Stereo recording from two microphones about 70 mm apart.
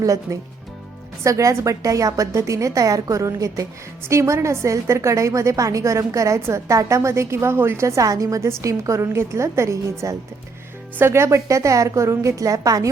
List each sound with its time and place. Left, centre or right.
0.0 s a woman's voice: right